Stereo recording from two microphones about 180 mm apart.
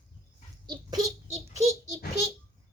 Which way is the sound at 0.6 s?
25° right (ahead or behind).